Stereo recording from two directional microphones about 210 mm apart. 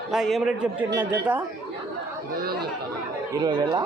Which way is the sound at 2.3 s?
45° right (ahead or behind).